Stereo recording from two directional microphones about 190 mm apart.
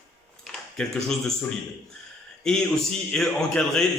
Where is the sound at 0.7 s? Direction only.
Centre (ahead or behind).